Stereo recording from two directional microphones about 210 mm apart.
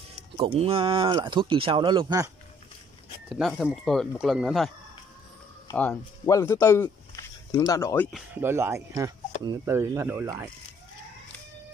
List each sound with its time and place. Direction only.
0.4 s speech: 25° right (ahead or behind)
3.3 s speech: centre (ahead or behind)
5.7 s speech: 10° left (ahead or behind)
8.1 s speech: 10° right (ahead or behind)